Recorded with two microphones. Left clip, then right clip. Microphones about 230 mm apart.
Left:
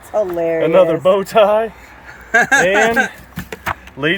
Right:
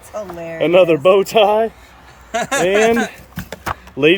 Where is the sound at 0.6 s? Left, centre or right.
Right.